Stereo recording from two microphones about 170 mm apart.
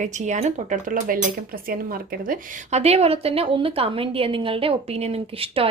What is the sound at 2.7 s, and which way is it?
A woman's voice, 40° right (ahead or behind).